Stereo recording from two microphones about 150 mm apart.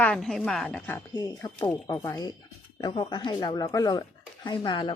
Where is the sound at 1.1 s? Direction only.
25° left (ahead or behind).